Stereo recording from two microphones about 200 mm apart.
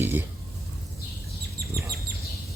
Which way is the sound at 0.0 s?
10° right (ahead or behind).